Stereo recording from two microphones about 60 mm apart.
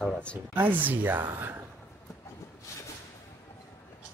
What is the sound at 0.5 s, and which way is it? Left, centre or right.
A woman's voice, right.